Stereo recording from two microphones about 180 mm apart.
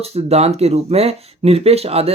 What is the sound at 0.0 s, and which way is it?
Speech, 35° right (ahead or behind).